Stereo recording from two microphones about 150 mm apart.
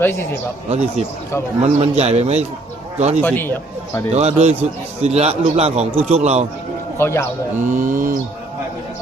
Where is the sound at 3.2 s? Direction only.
15° left (ahead or behind).